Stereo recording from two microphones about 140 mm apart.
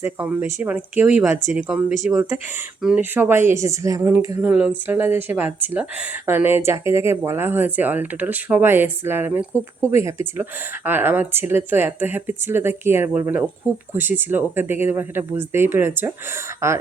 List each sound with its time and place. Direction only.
0.0 s speech: 15° right (ahead or behind)